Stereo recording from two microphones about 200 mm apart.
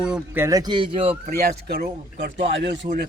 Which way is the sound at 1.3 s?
50° right (ahead or behind).